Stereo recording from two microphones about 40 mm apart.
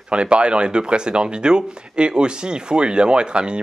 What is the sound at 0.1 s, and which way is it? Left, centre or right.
Speech, right.